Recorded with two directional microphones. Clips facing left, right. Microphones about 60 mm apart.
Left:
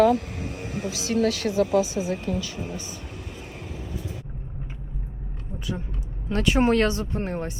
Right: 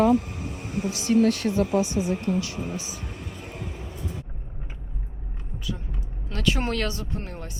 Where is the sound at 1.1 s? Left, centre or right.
Left.